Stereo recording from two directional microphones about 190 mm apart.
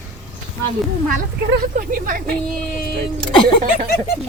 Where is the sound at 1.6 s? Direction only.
50° right (ahead or behind).